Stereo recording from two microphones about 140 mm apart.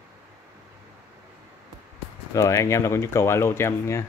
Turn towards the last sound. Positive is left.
turn(degrees=20)  # may be behind; listen again after turning